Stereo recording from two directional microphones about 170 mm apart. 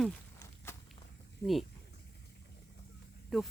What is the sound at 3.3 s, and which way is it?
Speech, centre (ahead or behind).